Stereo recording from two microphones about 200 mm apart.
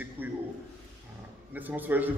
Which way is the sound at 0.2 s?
10° right (ahead or behind).